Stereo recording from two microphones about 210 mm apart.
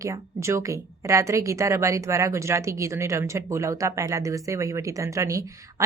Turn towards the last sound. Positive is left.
turn(degrees=-15)  # may be behind; listen again after turning